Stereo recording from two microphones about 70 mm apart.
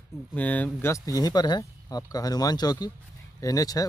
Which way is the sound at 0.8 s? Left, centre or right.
Left.